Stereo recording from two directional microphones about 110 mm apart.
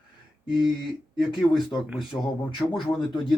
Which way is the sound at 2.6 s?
45° left (ahead or behind).